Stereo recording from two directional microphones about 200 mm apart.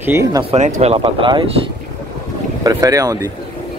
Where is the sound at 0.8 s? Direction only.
30° right (ahead or behind).